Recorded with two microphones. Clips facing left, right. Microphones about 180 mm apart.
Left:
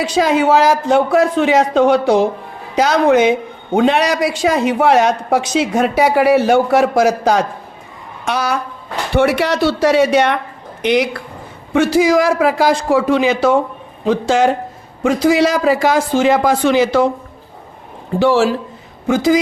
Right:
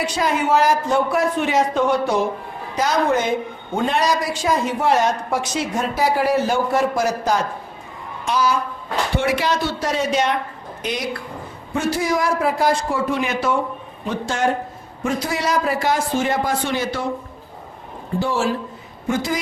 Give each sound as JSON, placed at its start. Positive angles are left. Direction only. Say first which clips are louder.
{"t": 0.0, "sound": "a woman's voice", "louder": "left 7 dB", "side_deg": 90}
{"t": 8.3, "sound": "speech", "louder": "left 1 dB", "side_deg": 70}
{"t": 11.7, "sound": "a woman's voice", "louder": "left 9 dB", "side_deg": 90}
{"t": 18.2, "sound": "a woman's voice", "louder": "left 8 dB", "side_deg": 90}